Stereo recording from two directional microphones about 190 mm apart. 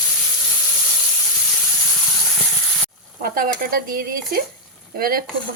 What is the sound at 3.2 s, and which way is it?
Speech, 45° right (ahead or behind).